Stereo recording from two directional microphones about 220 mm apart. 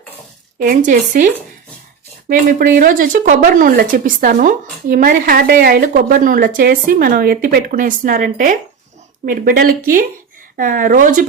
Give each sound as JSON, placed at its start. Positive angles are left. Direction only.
{"t": 0.6, "sound": "a woman's voice", "side_deg": -35}
{"t": 2.3, "sound": "a woman's voice", "side_deg": -40}